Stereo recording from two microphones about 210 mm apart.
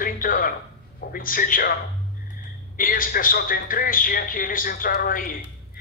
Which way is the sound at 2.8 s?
40° left (ahead or behind).